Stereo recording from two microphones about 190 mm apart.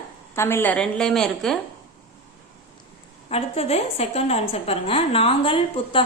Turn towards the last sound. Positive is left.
turn(degrees=25)  # may be behind; listen again after turning